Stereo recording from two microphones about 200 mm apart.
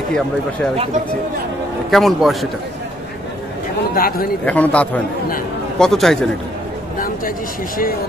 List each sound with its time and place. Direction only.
1.9 s a man's voice: centre (ahead or behind)
3.9 s speech: 50° left (ahead or behind)
4.5 s a man's voice: 5° left (ahead or behind)
7.0 s speech: 45° left (ahead or behind)